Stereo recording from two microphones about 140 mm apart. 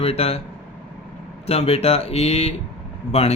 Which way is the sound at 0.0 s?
45° left (ahead or behind).